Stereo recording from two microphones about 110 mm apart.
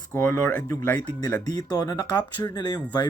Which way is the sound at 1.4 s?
40° left (ahead or behind).